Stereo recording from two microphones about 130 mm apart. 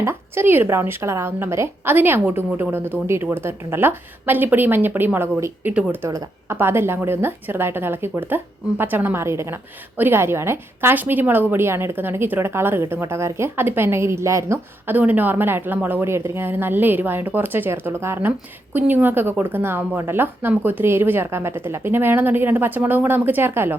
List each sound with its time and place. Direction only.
0.0 s a woman's voice: 20° right (ahead or behind)